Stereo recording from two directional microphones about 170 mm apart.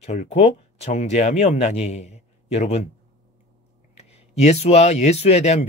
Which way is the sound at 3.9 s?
40° left (ahead or behind).